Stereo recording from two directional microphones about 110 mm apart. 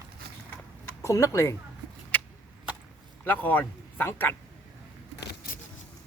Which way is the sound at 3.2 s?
15° left (ahead or behind).